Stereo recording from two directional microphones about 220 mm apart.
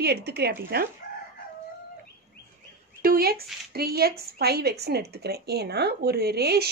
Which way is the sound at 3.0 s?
45° right (ahead or behind).